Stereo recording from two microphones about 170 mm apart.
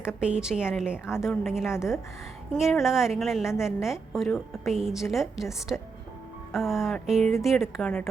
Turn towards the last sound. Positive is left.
turn(degrees=0)  # may be behind; listen again after turning